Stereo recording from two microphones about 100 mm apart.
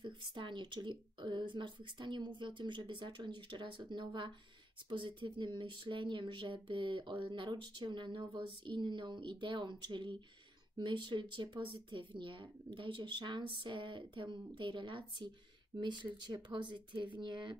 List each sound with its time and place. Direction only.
0.0 s speech: 50° right (ahead or behind)